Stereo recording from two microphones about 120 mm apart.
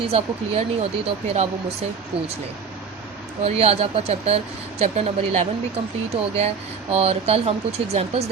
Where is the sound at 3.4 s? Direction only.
55° right (ahead or behind).